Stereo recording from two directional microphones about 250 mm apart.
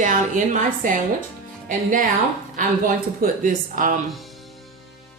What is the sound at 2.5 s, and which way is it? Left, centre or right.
A woman's voice, right.